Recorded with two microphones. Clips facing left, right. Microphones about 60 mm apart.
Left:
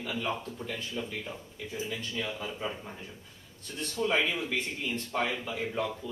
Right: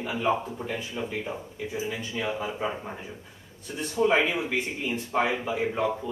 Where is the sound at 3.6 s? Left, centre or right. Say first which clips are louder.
Right 7 dB; centre.